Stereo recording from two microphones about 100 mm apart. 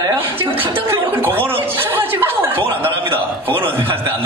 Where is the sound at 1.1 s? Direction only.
25° right (ahead or behind).